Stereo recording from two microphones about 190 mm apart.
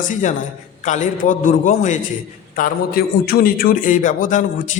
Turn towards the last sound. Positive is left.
turn(degrees=40)  # may be behind; listen again after turning